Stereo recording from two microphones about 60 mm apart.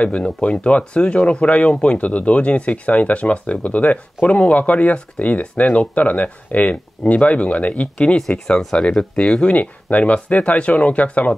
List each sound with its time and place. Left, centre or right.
0.0 s speech: centre